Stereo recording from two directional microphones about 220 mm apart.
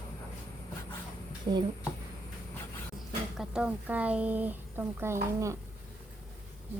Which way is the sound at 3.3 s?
5° right (ahead or behind).